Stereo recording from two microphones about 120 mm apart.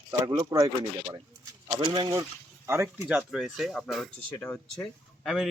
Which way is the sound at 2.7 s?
20° right (ahead or behind).